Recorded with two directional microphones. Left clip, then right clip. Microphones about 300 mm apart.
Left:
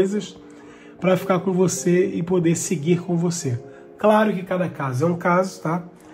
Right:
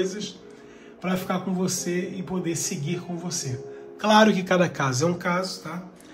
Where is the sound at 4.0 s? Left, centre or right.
Centre.